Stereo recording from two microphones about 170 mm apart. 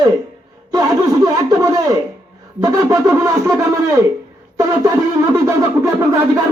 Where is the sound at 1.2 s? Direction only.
20° right (ahead or behind).